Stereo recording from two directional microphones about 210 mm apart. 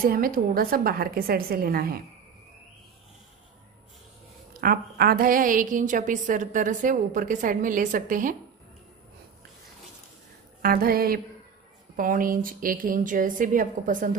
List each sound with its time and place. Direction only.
0.0 s a woman's voice: 45° right (ahead or behind)
4.6 s a woman's voice: 45° right (ahead or behind)
10.6 s a woman's voice: 45° right (ahead or behind)